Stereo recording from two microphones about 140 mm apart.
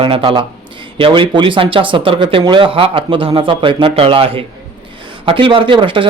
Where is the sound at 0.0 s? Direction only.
40° right (ahead or behind).